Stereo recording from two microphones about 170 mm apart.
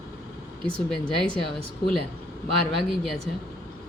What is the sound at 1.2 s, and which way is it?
Speech, 30° right (ahead or behind).